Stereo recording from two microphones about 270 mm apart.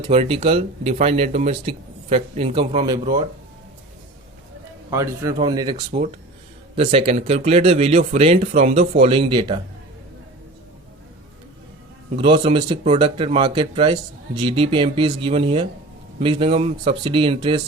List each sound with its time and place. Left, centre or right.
0.0 s speech: right
4.9 s speech: centre
12.1 s speech: centre